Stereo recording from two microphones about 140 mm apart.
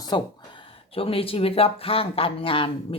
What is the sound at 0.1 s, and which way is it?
Speech, 35° left (ahead or behind).